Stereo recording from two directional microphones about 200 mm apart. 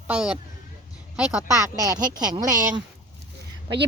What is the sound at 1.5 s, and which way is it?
Speech, 15° right (ahead or behind).